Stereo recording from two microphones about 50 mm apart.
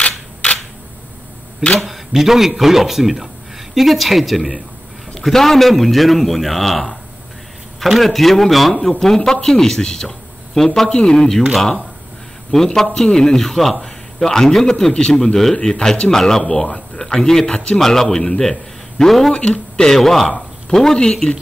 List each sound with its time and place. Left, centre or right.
0.0 s camera: left
1.8 s a man's voice: centre
12.4 s a man's voice: centre